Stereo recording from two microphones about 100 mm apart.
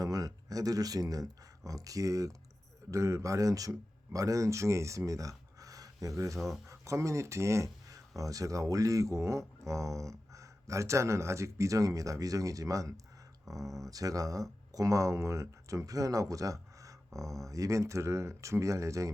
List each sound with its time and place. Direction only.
0.0 s speech: 40° right (ahead or behind)
5.5 s a sound: 35° right (ahead or behind)
6.7 s speech: 30° right (ahead or behind)